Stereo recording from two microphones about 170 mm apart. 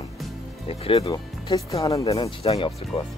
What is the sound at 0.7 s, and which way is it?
Speech, 35° left (ahead or behind).